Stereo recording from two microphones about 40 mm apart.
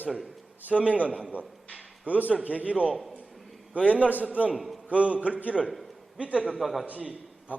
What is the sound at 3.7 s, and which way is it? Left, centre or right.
Speech, right.